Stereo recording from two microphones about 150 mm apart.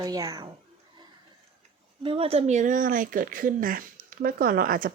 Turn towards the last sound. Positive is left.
turn(degrees=-65)  # may be behind; listen again after turning